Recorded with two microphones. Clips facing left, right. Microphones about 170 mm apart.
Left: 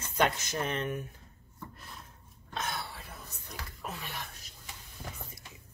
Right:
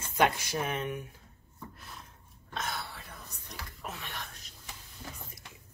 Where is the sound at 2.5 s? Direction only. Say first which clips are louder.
Left 1 dB; centre (ahead or behind).